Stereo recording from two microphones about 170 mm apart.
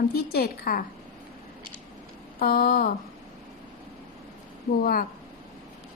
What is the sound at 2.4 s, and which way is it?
Speech, 60° left (ahead or behind).